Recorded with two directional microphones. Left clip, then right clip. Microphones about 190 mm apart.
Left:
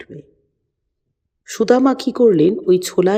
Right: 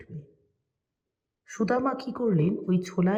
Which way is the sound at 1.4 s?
35° left (ahead or behind).